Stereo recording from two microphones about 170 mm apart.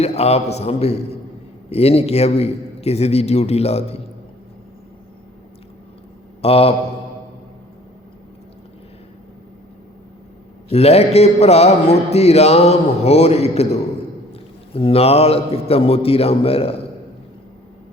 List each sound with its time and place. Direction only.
0.0 s a man's voice: 40° left (ahead or behind)
6.4 s a man's voice: 35° left (ahead or behind)
10.7 s a man's voice: 40° left (ahead or behind)
14.7 s a man's voice: 35° left (ahead or behind)